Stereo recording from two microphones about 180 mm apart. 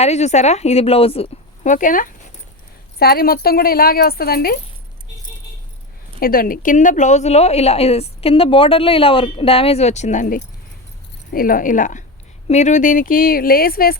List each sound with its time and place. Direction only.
0.0 s a woman's voice: 40° left (ahead or behind); by 4.5 s 60° left (ahead or behind)
6.1 s speech: 55° left (ahead or behind)